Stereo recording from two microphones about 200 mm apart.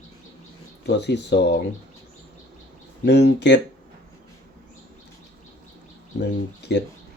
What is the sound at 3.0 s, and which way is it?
Speech, 60° left (ahead or behind).